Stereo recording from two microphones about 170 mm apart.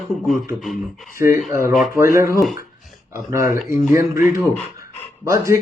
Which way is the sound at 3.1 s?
15° right (ahead or behind).